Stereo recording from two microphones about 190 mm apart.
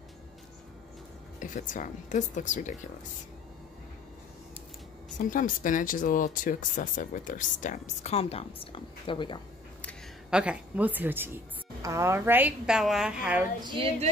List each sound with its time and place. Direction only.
1.4 s a woman's voice: 45° left (ahead or behind)
5.3 s speech: 45° left (ahead or behind); by 9.4 s 25° left (ahead or behind)
10.3 s a woman's voice: 5° right (ahead or behind)
13.6 s a sound: 25° right (ahead or behind)